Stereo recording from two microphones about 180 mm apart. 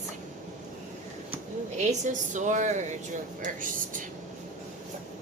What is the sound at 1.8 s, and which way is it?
A woman's voice, 40° right (ahead or behind).